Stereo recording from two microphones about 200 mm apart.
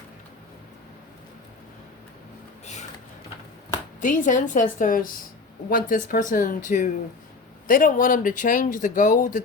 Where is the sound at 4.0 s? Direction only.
40° left (ahead or behind).